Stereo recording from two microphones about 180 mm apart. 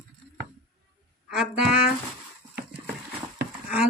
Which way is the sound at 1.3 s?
5° right (ahead or behind).